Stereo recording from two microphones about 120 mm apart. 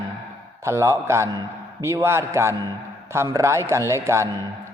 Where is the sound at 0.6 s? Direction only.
25° right (ahead or behind).